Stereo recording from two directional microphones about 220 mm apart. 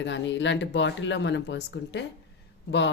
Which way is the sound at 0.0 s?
55° left (ahead or behind).